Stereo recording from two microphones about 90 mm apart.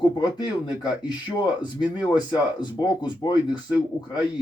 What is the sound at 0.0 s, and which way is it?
Speech, 55° left (ahead or behind).